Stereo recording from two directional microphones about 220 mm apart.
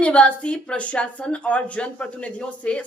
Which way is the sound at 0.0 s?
5° left (ahead or behind).